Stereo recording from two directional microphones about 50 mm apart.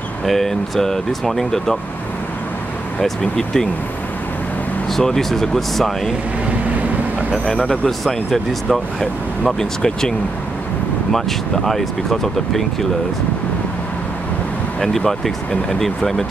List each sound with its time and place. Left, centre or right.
0.2 s speech: centre
3.0 s speech: centre
4.9 s speech: centre
7.4 s speech: left
7.8 s speech: centre
14.8 s speech: centre